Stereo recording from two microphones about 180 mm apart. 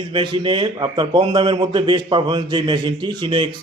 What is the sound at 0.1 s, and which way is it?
A man's voice, 30° right (ahead or behind).